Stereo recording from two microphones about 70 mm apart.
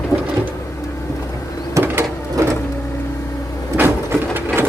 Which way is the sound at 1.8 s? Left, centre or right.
Right.